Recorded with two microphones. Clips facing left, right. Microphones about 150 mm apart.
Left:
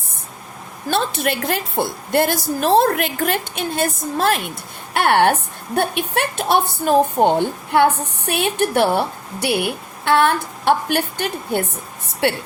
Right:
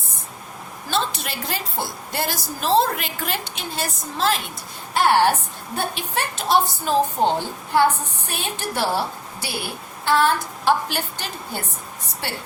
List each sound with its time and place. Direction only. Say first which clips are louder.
0.9 s a woman's voice: left 6 dB; 55° left (ahead or behind)